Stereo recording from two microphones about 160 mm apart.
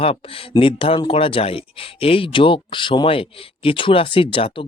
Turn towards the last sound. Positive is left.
turn(degrees=35)  # may be behind; listen again after turning